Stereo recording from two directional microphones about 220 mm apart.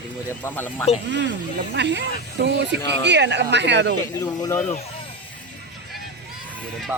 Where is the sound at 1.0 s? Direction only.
55° right (ahead or behind).